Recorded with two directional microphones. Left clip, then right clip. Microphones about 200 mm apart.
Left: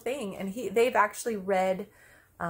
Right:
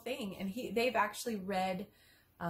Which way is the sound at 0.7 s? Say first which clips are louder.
Left 8 dB; 15° left (ahead or behind).